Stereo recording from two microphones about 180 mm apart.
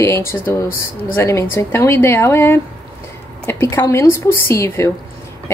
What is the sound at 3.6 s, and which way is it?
Speech, 15° left (ahead or behind).